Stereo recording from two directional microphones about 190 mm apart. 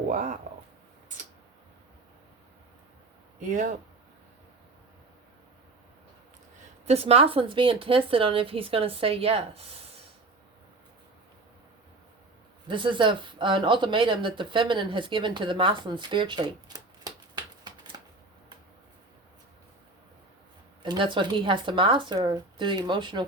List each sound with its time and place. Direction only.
3.5 s speech: 40° right (ahead or behind)
6.8 s speech: 30° right (ahead or behind)
12.6 s speech: 25° right (ahead or behind)
17.6 s typewriter: 20° right (ahead or behind)
20.8 s speech: 25° right (ahead or behind)